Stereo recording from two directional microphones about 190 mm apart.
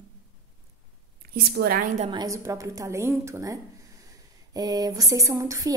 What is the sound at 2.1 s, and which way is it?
A woman's voice, 20° right (ahead or behind).